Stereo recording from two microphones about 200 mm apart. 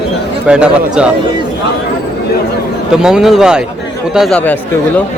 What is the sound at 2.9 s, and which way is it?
A man's voice, 5° right (ahead or behind).